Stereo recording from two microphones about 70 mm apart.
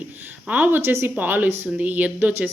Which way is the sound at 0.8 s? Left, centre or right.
Right.